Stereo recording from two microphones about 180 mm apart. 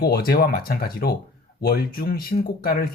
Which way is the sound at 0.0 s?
55° left (ahead or behind).